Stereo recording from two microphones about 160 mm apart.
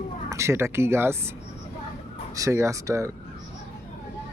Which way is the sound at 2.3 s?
20° right (ahead or behind).